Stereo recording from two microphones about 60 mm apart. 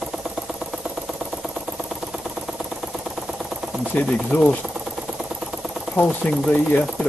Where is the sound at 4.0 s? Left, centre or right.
Left.